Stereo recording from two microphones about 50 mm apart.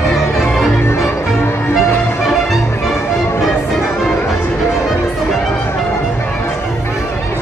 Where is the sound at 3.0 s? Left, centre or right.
Left.